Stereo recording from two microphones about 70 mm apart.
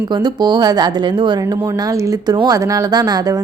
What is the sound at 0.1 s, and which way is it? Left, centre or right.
Speech, right.